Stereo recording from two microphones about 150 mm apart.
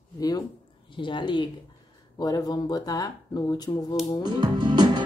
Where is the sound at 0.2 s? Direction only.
25° left (ahead or behind).